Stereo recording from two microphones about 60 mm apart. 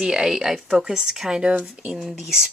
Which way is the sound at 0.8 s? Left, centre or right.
Centre.